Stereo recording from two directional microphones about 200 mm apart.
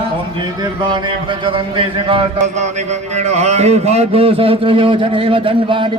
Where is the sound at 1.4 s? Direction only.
25° right (ahead or behind).